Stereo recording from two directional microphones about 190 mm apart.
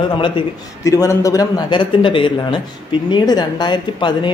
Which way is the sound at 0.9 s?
15° left (ahead or behind).